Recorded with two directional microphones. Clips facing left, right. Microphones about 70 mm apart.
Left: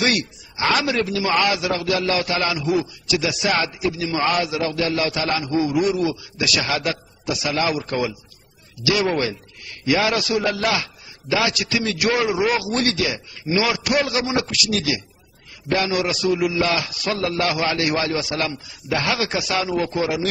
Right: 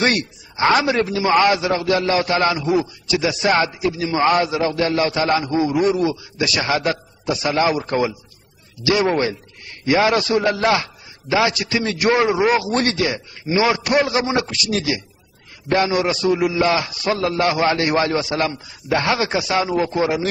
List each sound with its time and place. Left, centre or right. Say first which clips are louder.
0.0 s a man's voice: right 2 dB; right